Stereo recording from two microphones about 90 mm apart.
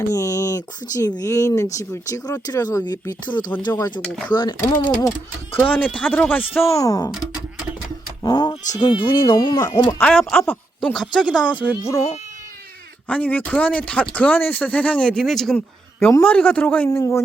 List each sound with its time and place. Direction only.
0.0 s speech: 40° left (ahead or behind)
4.0 s speech: 5° left (ahead or behind)
4.3 s speech: 50° left (ahead or behind)
5.6 s speech: 15° left (ahead or behind)
6.7 s speech: 40° left (ahead or behind)
8.2 s speech: 50° left (ahead or behind)
10.0 s speech: 15° left (ahead or behind)
10.9 s speech: centre (ahead or behind)
13.1 s speech: 15° left (ahead or behind)
15.5 s a sound: 20° left (ahead or behind)
16.2 s speech: 15° left (ahead or behind)
17.0 s speech: 30° left (ahead or behind)